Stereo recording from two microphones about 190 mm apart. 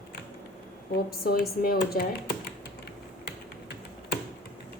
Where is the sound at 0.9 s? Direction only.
50° left (ahead or behind).